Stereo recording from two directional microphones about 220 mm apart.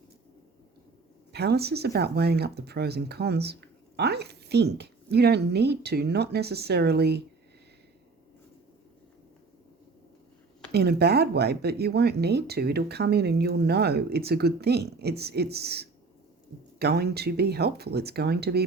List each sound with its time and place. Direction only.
1.3 s speech: 50° right (ahead or behind)
10.7 s speech: 50° right (ahead or behind)